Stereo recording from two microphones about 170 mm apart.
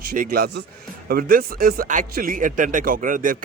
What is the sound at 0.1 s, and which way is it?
A man's voice, 60° right (ahead or behind).